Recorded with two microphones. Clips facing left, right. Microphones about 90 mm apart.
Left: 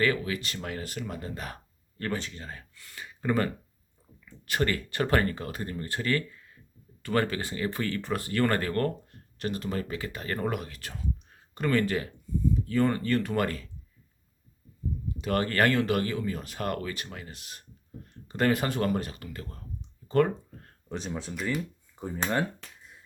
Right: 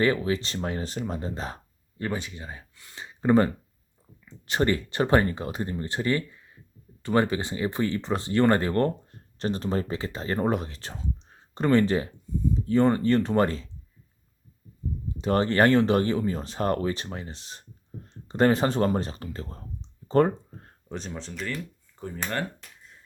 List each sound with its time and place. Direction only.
0.0 s speech: 30° right (ahead or behind)
2.0 s speech: 15° right (ahead or behind)
15.2 s speech: 25° right (ahead or behind)
20.1 s a sound: 30° right (ahead or behind)
20.9 s speech: 5° left (ahead or behind)